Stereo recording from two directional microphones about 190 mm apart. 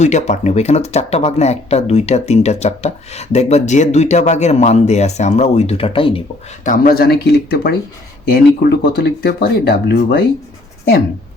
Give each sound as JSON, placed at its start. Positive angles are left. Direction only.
{"t": 0.0, "sound": "speech", "side_deg": 40}
{"t": 6.7, "sound": "speech", "side_deg": 50}